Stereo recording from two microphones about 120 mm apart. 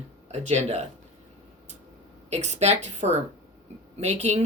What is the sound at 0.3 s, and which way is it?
Speech, 65° right (ahead or behind).